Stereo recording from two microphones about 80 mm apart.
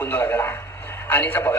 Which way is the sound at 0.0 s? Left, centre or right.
Left.